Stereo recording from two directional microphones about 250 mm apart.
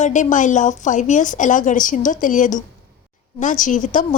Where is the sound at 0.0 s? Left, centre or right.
Left.